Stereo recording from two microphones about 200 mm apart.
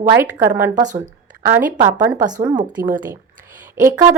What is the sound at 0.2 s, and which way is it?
Speech, 10° right (ahead or behind).